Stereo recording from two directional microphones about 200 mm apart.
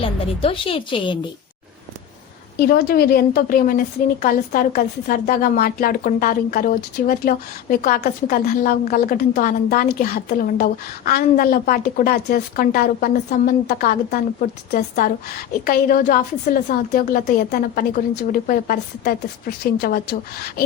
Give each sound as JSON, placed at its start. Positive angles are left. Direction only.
{"t": 0.0, "sound": "a woman's voice", "side_deg": 25}
{"t": 2.6, "sound": "a woman's voice", "side_deg": 50}